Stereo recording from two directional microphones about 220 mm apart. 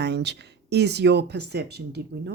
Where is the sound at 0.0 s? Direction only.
50° right (ahead or behind).